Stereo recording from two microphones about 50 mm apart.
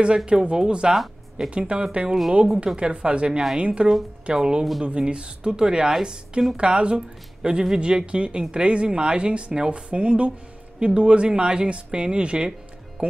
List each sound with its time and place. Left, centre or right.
0.0 s speech: centre